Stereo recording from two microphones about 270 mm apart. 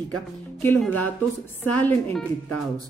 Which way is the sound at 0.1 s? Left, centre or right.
Centre.